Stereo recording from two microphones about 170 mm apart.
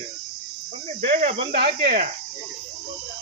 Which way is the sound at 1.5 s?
65° right (ahead or behind).